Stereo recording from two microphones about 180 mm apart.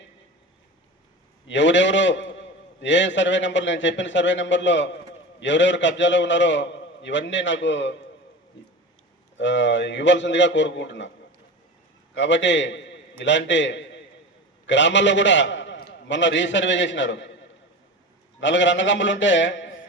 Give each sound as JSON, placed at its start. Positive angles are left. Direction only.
{"t": 1.5, "sound": "a man's voice", "side_deg": 90}
{"t": 9.4, "sound": "a man's voice", "side_deg": 90}
{"t": 12.1, "sound": "a man's voice", "side_deg": 90}
{"t": 18.3, "sound": "a man's voice", "side_deg": 90}